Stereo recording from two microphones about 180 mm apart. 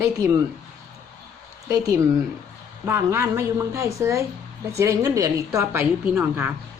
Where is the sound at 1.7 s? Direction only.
15° right (ahead or behind).